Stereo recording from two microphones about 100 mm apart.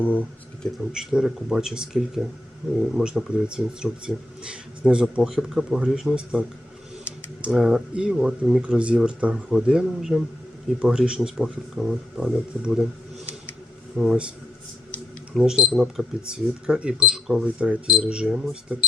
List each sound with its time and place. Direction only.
0.0 s speech: 15° left (ahead or behind)
0.9 s speech: 5° right (ahead or behind)
7.4 s speech: 5° right (ahead or behind)
14.0 s speech: 10° right (ahead or behind)
15.4 s speech: 10° right (ahead or behind)